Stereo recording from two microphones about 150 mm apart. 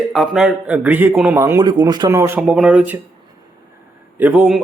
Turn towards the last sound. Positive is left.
turn(degrees=-10)  # may be behind; listen again after turning